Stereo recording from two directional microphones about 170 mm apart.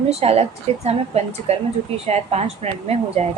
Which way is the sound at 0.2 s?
35° right (ahead or behind).